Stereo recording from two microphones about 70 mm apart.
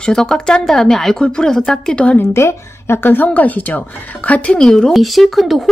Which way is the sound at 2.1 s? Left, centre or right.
Left.